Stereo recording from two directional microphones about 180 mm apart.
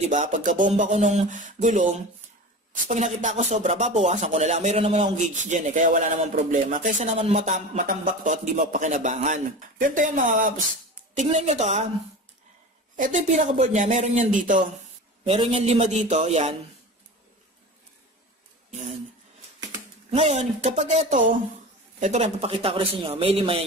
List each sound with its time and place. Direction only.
0.0 s speech: 40° right (ahead or behind)
12.9 s speech: 40° right (ahead or behind)
15.2 s speech: 30° right (ahead or behind)
20.1 s speech: 35° right (ahead or behind)